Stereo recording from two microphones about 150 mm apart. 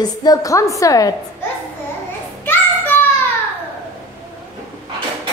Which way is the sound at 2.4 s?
15° left (ahead or behind).